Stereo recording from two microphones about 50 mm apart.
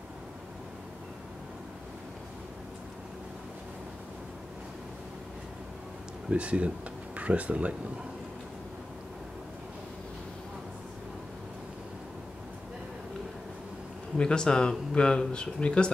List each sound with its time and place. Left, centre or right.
6.3 s speech: right
14.1 s speech: centre